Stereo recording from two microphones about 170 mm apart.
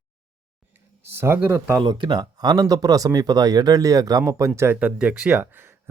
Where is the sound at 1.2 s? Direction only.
15° right (ahead or behind).